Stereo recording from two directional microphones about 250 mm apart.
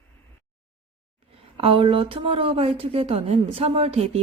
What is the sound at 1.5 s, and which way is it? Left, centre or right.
A woman's voice, right.